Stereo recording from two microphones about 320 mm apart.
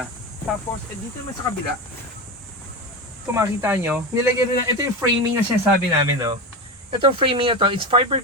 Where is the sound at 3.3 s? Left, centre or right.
Centre.